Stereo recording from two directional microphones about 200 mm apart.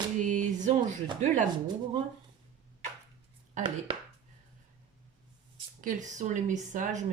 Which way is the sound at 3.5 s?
25° right (ahead or behind).